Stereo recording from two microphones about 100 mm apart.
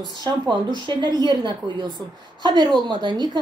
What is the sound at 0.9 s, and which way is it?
A woman's voice, 45° right (ahead or behind).